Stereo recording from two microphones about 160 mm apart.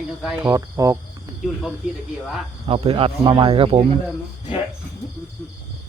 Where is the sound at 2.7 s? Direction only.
35° right (ahead or behind).